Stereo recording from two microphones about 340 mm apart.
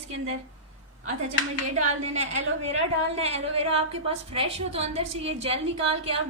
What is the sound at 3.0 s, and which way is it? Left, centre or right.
A woman's voice, centre.